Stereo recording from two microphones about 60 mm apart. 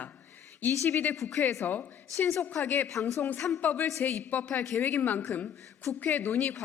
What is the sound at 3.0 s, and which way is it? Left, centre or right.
Speech, left.